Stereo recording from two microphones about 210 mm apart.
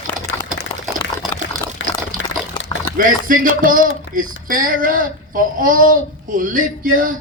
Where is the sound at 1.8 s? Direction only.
60° left (ahead or behind).